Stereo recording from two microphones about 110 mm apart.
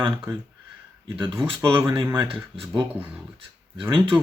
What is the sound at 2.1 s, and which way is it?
Speech, 45° right (ahead or behind).